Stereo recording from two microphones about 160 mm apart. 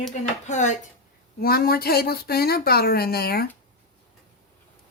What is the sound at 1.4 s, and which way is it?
Speech, 70° left (ahead or behind).